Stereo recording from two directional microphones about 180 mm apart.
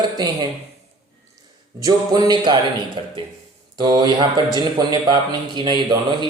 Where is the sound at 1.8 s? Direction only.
20° right (ahead or behind).